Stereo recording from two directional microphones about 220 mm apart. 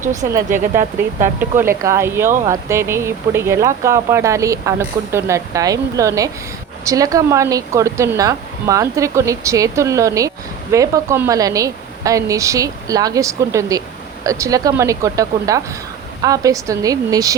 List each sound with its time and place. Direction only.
0.5 s speech: 35° right (ahead or behind)
1.4 s speech: 10° right (ahead or behind)